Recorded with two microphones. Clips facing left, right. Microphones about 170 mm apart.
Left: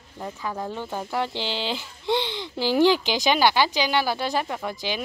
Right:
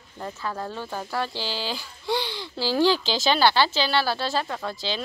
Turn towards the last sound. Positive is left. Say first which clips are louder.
# left 1 dB
turn(degrees=15)  # may be behind; listen again after turning